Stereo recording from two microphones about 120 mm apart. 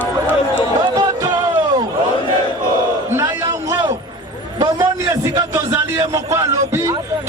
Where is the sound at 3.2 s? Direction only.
30° right (ahead or behind).